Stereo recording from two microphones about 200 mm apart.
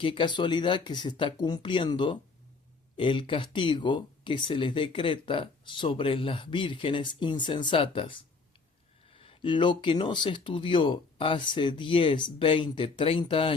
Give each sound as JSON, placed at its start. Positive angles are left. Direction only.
{"t": 0.0, "sound": "speech", "side_deg": 25}